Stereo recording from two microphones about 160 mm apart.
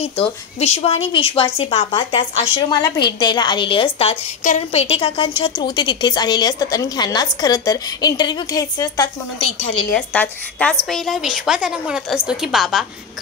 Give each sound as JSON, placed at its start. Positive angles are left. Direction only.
{"t": 0.0, "sound": "a woman's voice", "side_deg": 40}
{"t": 9.9, "sound": "a woman's voice", "side_deg": 10}